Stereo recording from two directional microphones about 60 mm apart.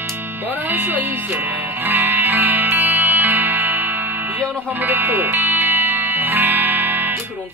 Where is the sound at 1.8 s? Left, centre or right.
Right.